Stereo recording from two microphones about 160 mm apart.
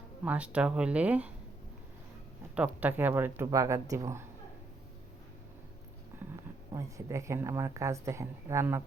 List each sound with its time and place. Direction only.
0.3 s speech: 10° right (ahead or behind)
2.6 s speech: 10° right (ahead or behind)
6.3 s speech: 20° right (ahead or behind)